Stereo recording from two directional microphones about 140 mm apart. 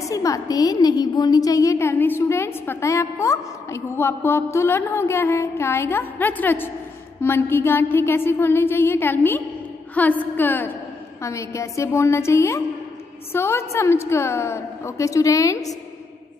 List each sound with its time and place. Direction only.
0.0 s a woman's voice: 25° left (ahead or behind)
7.2 s a sound: 15° left (ahead or behind)
11.2 s a woman's voice: 20° left (ahead or behind)